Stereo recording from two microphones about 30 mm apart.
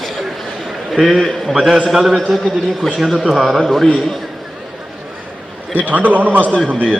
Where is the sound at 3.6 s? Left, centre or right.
Centre.